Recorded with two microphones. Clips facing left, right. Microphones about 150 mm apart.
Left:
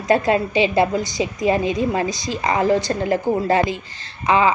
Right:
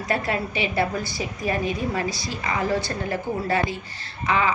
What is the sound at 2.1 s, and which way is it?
Speech, 90° left.